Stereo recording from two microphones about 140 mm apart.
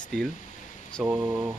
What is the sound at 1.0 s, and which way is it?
Speech, 10° right (ahead or behind).